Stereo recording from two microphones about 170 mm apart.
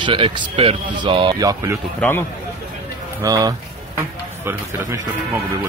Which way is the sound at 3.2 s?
20° right (ahead or behind).